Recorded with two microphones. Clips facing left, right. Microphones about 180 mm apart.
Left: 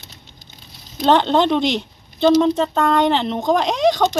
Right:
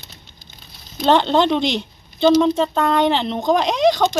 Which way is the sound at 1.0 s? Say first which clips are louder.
Even; centre (ahead or behind).